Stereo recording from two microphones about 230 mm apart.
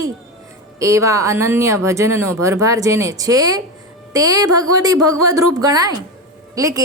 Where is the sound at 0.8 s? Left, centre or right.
Centre.